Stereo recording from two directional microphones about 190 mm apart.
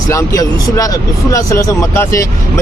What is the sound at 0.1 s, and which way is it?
Speech, 20° left (ahead or behind).